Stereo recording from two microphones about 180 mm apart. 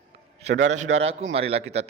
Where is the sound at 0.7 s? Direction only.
40° right (ahead or behind).